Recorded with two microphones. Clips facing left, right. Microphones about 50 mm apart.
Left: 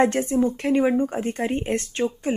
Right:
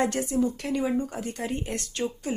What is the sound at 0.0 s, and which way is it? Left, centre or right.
Speech, left.